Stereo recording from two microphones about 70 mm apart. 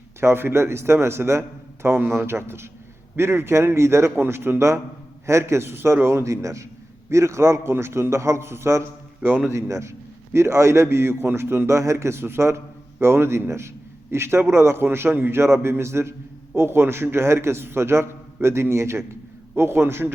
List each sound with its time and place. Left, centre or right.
0.2 s a man's voice: right